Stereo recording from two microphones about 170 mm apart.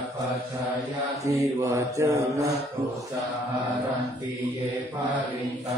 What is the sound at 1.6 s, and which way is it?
Mantra, 20° right (ahead or behind).